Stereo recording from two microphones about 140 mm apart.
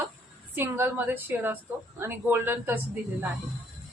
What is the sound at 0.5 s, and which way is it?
A woman's voice, 15° right (ahead or behind).